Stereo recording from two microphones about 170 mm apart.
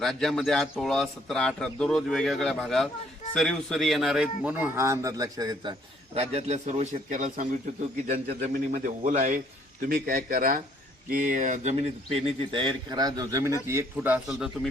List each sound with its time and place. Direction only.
0.0 s a man's voice: centre (ahead or behind); by 5.7 s 20° right (ahead or behind)
6.1 s a man's voice: 40° right (ahead or behind)
8.7 s a man's voice: 55° right (ahead or behind); by 14.7 s 5° right (ahead or behind)